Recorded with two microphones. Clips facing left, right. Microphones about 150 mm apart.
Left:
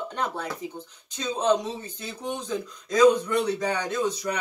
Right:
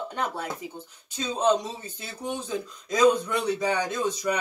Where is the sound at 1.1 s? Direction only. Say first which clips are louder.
Even; 10° right (ahead or behind).